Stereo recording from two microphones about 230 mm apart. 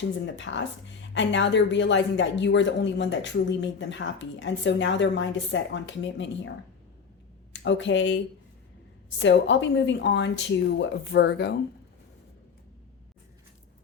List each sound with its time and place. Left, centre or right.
0.3 s a woman's voice: left
7.6 s a woman's voice: left